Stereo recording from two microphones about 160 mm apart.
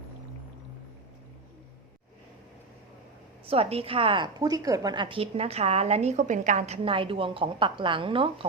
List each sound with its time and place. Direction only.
3.4 s a woman's voice: 35° right (ahead or behind)